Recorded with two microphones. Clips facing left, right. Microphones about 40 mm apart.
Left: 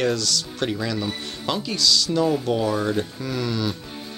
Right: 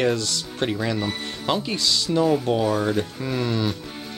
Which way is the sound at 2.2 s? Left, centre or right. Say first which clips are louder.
Right 4 dB; centre.